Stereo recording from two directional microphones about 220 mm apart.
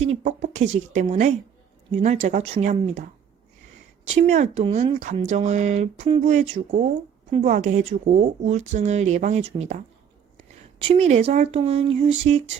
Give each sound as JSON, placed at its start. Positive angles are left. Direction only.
{"t": 0.0, "sound": "speech", "side_deg": -30}
{"t": 4.1, "sound": "speech", "side_deg": -30}